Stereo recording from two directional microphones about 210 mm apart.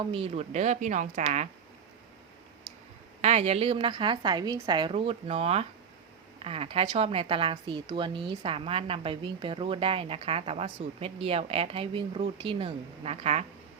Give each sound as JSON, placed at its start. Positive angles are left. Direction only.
{"t": 0.0, "sound": "a woman's voice", "side_deg": -25}
{"t": 3.2, "sound": "a woman's voice", "side_deg": -30}